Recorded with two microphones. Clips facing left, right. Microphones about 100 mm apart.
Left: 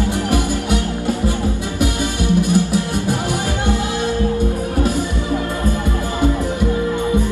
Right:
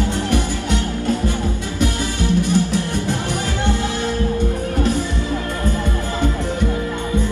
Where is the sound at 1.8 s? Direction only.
15° left (ahead or behind).